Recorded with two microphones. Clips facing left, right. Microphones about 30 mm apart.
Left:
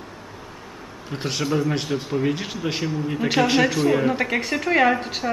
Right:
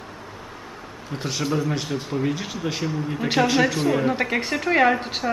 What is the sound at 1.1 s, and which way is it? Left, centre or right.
A woman's voice, centre.